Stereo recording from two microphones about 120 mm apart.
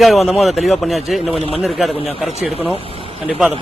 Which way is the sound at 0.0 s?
Centre (ahead or behind).